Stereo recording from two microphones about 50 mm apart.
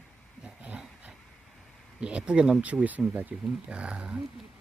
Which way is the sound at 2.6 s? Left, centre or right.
Right.